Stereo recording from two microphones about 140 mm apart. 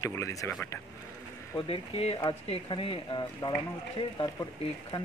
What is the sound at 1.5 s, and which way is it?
Speech, 40° left (ahead or behind).